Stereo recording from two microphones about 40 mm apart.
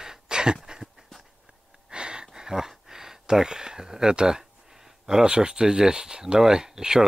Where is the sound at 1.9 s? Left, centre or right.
Right.